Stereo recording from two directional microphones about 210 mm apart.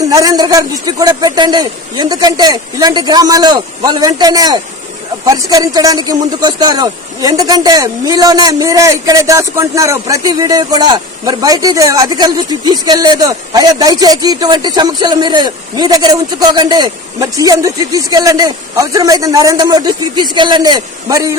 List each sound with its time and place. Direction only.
0.0 s a man's voice: 15° right (ahead or behind)